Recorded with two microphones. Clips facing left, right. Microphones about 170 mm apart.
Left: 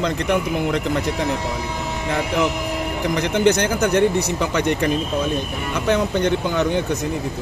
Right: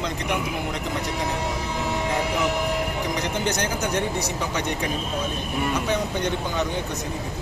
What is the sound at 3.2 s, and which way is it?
A man's voice, 65° left (ahead or behind).